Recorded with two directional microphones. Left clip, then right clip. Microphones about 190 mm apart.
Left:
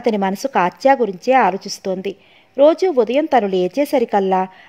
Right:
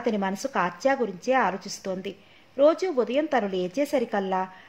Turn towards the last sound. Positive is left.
turn(degrees=40)  # may be behind; listen again after turning